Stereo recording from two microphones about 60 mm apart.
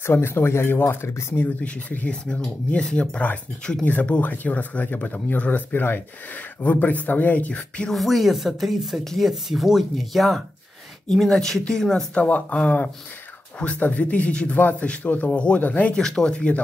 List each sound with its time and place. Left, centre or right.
0.0 s speech: left
1.6 s speech: left
7.9 s speech: centre
12.1 s speech: left
15.6 s speech: left
15.9 s speech: centre